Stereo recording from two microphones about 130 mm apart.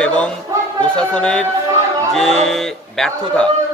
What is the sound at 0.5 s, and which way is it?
Music, 25° right (ahead or behind).